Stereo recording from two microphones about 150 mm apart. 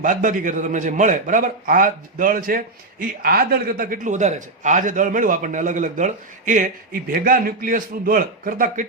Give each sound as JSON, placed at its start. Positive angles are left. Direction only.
{"t": 0.0, "sound": "a man's voice", "side_deg": -60}
{"t": 3.0, "sound": "a man's voice", "side_deg": -75}
{"t": 7.1, "sound": "a man's voice", "side_deg": -70}